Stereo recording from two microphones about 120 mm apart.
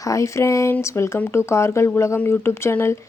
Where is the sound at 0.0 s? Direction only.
25° left (ahead or behind).